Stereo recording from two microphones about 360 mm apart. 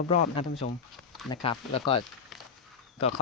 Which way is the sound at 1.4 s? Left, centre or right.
Centre.